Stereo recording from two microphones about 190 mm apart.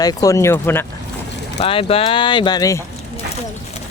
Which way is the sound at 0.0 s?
20° left (ahead or behind).